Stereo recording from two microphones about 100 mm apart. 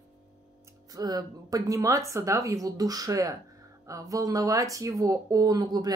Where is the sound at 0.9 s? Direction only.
40° right (ahead or behind).